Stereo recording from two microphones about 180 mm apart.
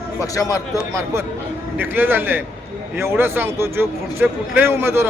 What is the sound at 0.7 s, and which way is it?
Speech, 15° right (ahead or behind).